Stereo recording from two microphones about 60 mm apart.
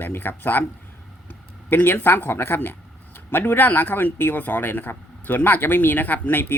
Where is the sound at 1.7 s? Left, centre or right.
Left.